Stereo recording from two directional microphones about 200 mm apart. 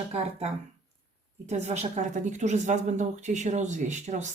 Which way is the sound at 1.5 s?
35° right (ahead or behind).